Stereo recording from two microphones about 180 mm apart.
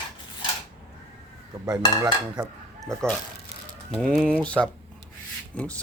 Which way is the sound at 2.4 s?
20° right (ahead or behind).